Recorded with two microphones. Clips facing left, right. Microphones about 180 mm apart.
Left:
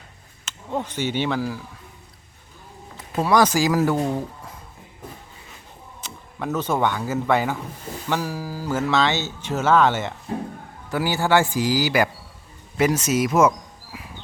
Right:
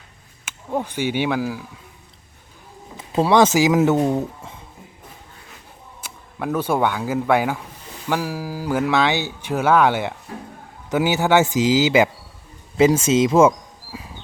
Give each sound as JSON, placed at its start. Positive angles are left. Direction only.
{"t": 0.4, "sound": "speech", "side_deg": -10}
{"t": 3.1, "sound": "speech", "side_deg": -25}
{"t": 6.0, "sound": "speech", "side_deg": -10}